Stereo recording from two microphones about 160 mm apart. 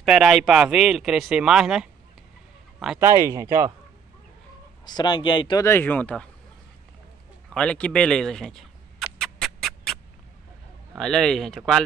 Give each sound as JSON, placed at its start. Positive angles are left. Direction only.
{"t": 0.0, "sound": "speech", "side_deg": 0}
{"t": 3.0, "sound": "speech", "side_deg": -15}
{"t": 4.8, "sound": "speech", "side_deg": 30}
{"t": 5.6, "sound": "speech", "side_deg": 15}
{"t": 7.4, "sound": "a sound", "side_deg": 5}
{"t": 11.0, "sound": "speech", "side_deg": 0}